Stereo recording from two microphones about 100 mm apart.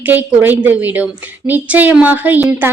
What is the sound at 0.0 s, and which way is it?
A woman's voice, 20° right (ahead or behind).